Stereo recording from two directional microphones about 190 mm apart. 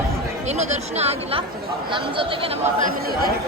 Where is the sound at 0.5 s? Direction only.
35° right (ahead or behind).